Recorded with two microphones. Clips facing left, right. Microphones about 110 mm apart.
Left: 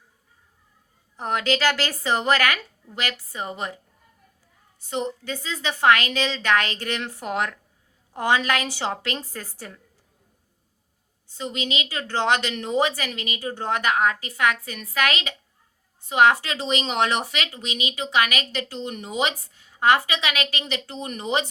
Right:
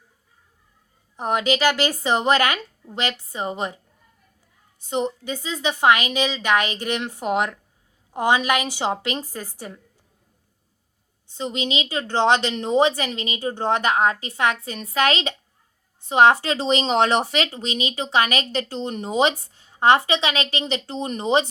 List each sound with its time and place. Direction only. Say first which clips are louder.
1.1 s a woman's voice: right 2 dB; 20° right (ahead or behind)
4.9 s a woman's voice: right 3 dB; 20° right (ahead or behind)
11.3 s a woman's voice: right 3 dB; 25° right (ahead or behind)